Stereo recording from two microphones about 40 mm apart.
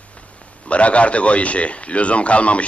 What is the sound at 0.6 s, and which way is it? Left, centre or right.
A man's voice, left.